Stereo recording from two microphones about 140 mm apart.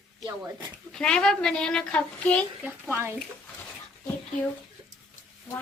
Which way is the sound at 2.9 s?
10° right (ahead or behind).